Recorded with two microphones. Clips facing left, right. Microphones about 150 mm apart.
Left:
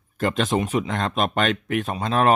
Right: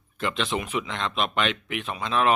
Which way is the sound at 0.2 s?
45° left (ahead or behind).